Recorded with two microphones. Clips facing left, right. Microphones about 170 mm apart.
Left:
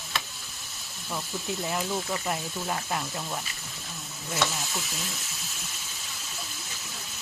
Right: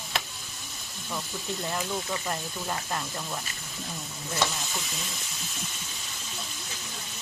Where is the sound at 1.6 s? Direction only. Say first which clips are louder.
Left 1 dB; 5° left (ahead or behind).